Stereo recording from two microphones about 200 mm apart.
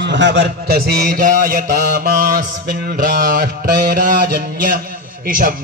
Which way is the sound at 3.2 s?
50° right (ahead or behind).